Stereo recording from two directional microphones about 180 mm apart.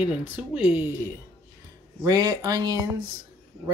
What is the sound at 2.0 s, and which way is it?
Speech, 20° right (ahead or behind).